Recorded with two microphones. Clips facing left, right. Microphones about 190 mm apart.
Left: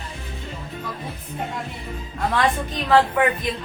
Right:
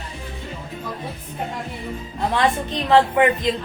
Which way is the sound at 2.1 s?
25° right (ahead or behind).